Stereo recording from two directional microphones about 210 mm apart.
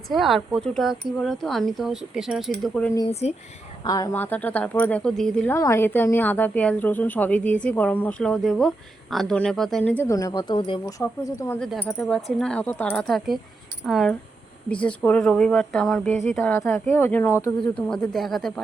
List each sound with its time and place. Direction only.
0.1 s speech: centre (ahead or behind)
3.1 s speech: 30° left (ahead or behind)
3.8 s speech: 15° left (ahead or behind)
11.6 s speech: centre (ahead or behind)